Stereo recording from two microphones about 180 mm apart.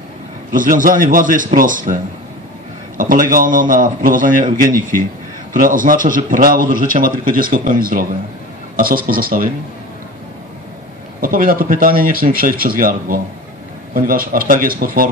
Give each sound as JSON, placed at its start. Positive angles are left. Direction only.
{"t": 0.5, "sound": "a man's voice", "side_deg": -50}
{"t": 3.0, "sound": "a man's voice", "side_deg": -50}
{"t": 5.5, "sound": "a man's voice", "side_deg": -50}
{"t": 11.1, "sound": "a man's voice", "side_deg": -50}